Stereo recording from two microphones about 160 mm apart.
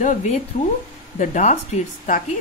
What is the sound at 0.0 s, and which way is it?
A woman's voice, 50° left (ahead or behind).